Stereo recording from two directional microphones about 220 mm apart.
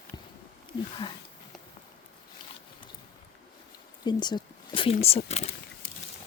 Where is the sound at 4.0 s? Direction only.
20° left (ahead or behind).